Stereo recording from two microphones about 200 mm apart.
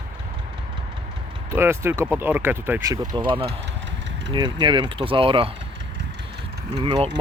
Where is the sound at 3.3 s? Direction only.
25° right (ahead or behind).